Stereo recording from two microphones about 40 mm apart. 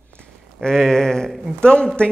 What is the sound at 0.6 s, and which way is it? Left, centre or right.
Speech, centre.